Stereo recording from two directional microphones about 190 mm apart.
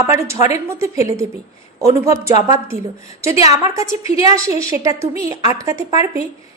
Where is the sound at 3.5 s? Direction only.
15° right (ahead or behind).